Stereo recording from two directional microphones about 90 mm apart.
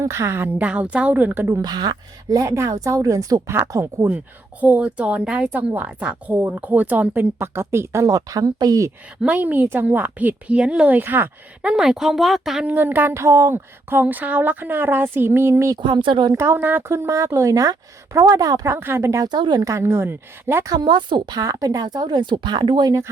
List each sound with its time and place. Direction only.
0.0 s speech: 30° right (ahead or behind)
0.6 s a woman's voice: 10° right (ahead or behind)
1.6 s speech: 50° right (ahead or behind); by 4.1 s 35° right (ahead or behind)
4.6 s a woman's voice: 15° right (ahead or behind)
8.0 s speech: 45° right (ahead or behind)
9.2 s a woman's voice: 15° right (ahead or behind)
11.6 s speech: 10° right (ahead or behind)
12.6 s speech: 20° right (ahead or behind)
15.8 s speech: 65° right (ahead or behind)
16.3 s speech: 30° right (ahead or behind)
18.7 s speech: 25° right (ahead or behind)
19.2 s speech: 50° right (ahead or behind)
19.6 s speech: 30° right (ahead or behind)
20.7 s speech: 55° right (ahead or behind)